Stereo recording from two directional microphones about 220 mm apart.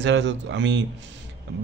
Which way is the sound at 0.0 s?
55° right (ahead or behind).